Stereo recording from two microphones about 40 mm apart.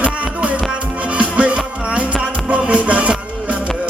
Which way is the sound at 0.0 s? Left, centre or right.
Right.